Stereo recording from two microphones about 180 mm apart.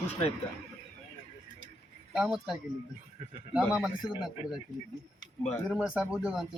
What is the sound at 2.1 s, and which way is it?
Speech, centre (ahead or behind).